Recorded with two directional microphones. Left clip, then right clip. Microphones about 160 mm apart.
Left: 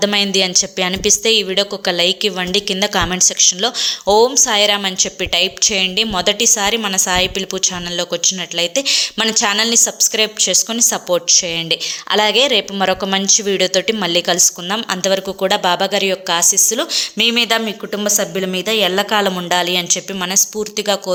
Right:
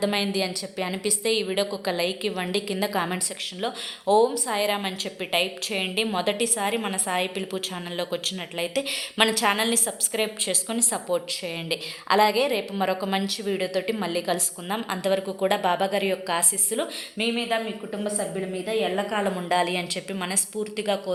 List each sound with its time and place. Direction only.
0.0 s a woman's voice: 25° left (ahead or behind); by 19.0 s 50° left (ahead or behind)
19.1 s a woman's voice: 25° left (ahead or behind)